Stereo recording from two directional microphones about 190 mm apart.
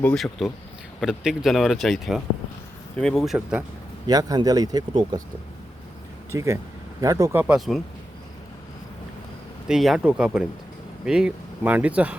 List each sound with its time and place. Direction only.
0.0 s speech: 5° left (ahead or behind)
4.0 s speech: 20° right (ahead or behind)
6.3 s speech: 15° right (ahead or behind)
9.6 s speech: centre (ahead or behind)